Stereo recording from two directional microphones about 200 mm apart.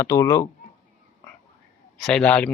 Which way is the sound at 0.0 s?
15° left (ahead or behind).